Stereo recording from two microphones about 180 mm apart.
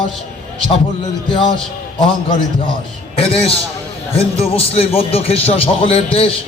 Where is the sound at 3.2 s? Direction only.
30° left (ahead or behind).